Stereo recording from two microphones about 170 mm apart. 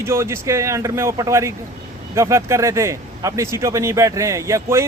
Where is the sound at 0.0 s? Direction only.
15° right (ahead or behind).